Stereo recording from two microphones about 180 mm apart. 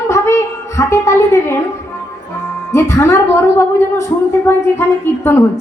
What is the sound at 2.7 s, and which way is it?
A woman's voice, 15° left (ahead or behind).